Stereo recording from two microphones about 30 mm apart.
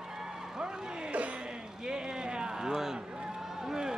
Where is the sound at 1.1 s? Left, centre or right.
Right.